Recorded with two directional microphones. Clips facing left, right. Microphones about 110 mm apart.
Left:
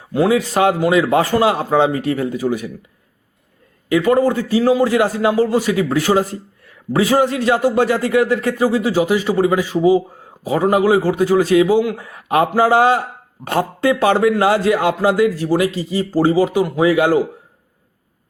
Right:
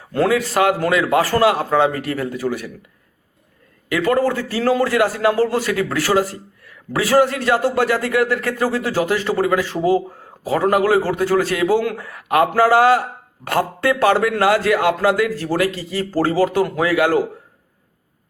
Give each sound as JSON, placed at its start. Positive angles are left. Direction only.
{"t": 0.3, "sound": "a man's voice", "side_deg": 25}
{"t": 3.8, "sound": "a man's voice", "side_deg": 20}